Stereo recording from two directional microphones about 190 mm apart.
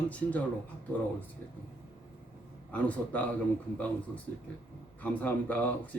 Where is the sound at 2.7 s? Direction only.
10° left (ahead or behind).